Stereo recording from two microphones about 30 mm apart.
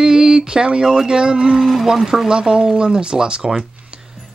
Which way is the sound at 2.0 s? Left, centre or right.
Centre.